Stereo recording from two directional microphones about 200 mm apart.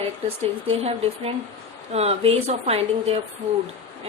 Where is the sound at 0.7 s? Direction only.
30° right (ahead or behind).